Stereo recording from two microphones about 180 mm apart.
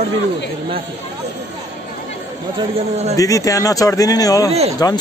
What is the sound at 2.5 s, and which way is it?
Speech, 35° right (ahead or behind).